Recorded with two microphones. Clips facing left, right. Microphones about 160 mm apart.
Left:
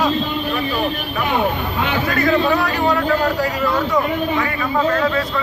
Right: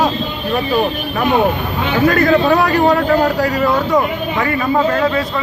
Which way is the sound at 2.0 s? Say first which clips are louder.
Right 6 dB; 45° right (ahead or behind).